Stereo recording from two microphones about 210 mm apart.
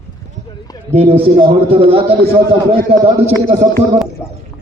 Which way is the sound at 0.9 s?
30° right (ahead or behind).